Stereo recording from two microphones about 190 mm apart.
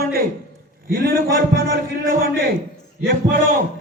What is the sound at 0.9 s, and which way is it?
A man's voice, 50° right (ahead or behind).